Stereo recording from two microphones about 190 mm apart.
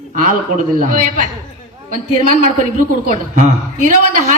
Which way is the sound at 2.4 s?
40° right (ahead or behind).